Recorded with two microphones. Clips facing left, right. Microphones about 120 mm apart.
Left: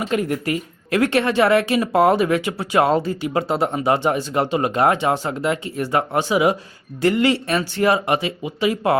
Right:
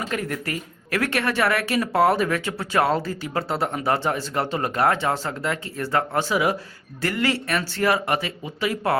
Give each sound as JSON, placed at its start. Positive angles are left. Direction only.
{"t": 0.0, "sound": "speech", "side_deg": 20}